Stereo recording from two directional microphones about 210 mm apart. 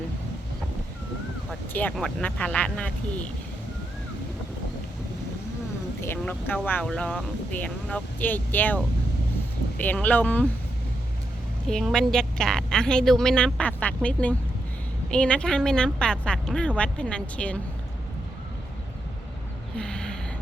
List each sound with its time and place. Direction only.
1.7 s a woman's voice: 5° left (ahead or behind)
6.0 s speech: 10° left (ahead or behind)
11.7 s a woman's voice: centre (ahead or behind)
19.7 s a sound: 5° left (ahead or behind)